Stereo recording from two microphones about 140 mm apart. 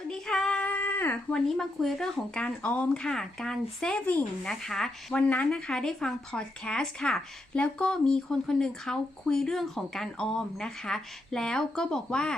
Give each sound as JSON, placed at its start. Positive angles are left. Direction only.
{"t": 0.1, "sound": "child singing", "side_deg": 5}
{"t": 1.5, "sound": "speech", "side_deg": 5}